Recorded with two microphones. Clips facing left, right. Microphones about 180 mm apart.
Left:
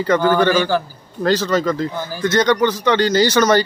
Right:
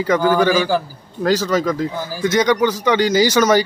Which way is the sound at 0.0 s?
5° right (ahead or behind).